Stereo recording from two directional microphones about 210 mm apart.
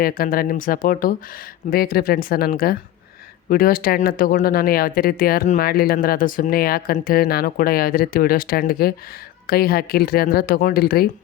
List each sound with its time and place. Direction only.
0.0 s speech: 45° left (ahead or behind)